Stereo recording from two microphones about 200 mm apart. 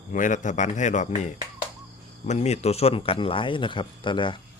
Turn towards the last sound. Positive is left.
turn(degrees=25)  # may be behind; listen again after turning